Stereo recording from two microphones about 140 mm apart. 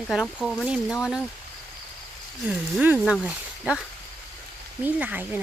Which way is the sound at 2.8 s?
10° right (ahead or behind).